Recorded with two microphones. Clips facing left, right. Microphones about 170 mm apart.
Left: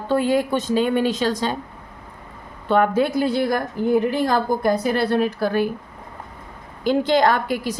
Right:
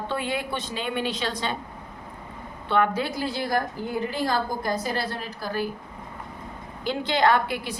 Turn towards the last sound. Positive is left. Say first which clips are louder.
# left 2 dB
turn(degrees=45)  # may be behind; listen again after turning